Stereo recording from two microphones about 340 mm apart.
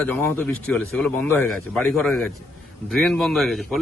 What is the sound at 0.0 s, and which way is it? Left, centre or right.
Speech, centre.